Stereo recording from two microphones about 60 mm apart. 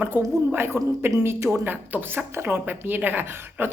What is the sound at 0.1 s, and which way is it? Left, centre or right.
A woman's voice, right.